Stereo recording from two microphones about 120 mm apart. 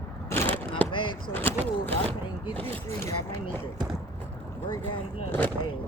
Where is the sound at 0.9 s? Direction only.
45° left (ahead or behind).